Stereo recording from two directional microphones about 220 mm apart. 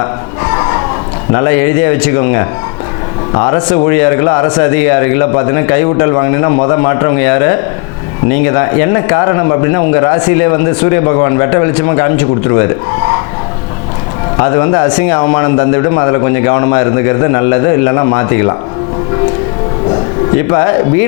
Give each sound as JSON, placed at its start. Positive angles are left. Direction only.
{"t": 1.3, "sound": "speech", "side_deg": 20}
{"t": 14.3, "sound": "speech", "side_deg": 25}
{"t": 20.5, "sound": "speech", "side_deg": 20}